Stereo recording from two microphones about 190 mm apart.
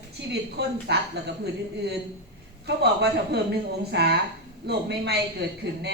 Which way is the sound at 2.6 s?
60° right (ahead or behind).